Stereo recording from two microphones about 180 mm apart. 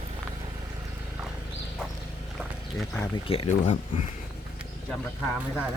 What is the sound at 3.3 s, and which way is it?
Speech, 30° left (ahead or behind).